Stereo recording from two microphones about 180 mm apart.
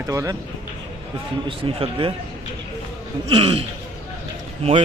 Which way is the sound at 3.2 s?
30° right (ahead or behind).